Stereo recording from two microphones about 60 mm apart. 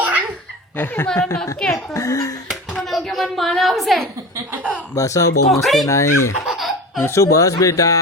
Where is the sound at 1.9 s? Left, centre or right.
Left.